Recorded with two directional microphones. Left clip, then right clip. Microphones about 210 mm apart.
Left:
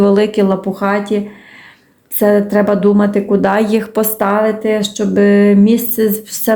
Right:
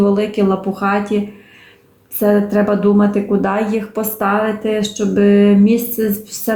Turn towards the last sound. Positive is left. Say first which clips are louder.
# left 4 dB
turn(degrees=35)  # may be behind; listen again after turning